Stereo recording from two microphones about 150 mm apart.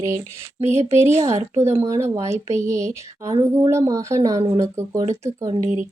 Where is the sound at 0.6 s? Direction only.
45° right (ahead or behind).